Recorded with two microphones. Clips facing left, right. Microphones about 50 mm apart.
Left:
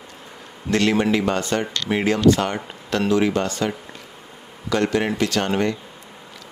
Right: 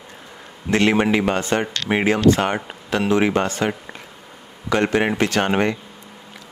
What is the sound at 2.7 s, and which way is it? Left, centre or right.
Speech, centre.